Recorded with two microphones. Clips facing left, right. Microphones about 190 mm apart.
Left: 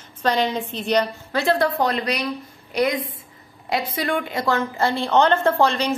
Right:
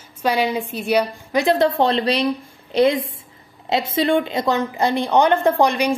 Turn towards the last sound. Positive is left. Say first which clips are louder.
# right 2 dB
turn(degrees=-15)  # may be behind; listen again after turning